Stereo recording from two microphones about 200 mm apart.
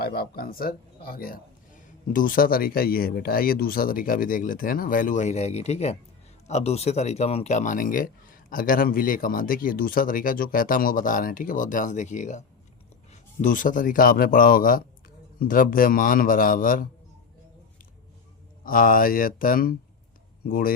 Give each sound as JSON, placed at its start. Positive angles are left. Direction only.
{"t": 0.0, "sound": "speech", "side_deg": 50}
{"t": 18.6, "sound": "speech", "side_deg": 45}